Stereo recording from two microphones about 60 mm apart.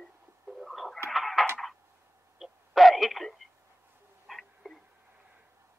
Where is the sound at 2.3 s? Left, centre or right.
Centre.